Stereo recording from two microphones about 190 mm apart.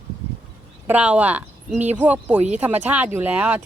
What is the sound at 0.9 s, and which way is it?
Speech, 5° right (ahead or behind).